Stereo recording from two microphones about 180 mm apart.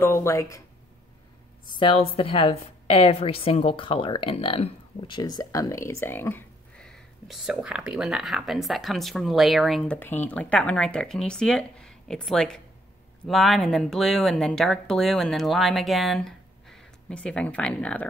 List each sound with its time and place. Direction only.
0.0 s a woman's voice: 15° left (ahead or behind)
1.8 s a woman's voice: 30° left (ahead or behind); by 18.0 s 5° left (ahead or behind)